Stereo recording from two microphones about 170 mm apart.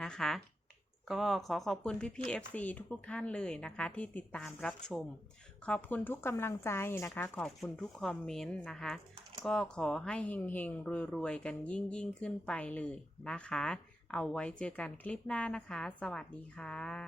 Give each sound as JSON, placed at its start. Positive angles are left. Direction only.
{"t": 0.0, "sound": "speech", "side_deg": 0}
{"t": 7.4, "sound": "speech", "side_deg": 5}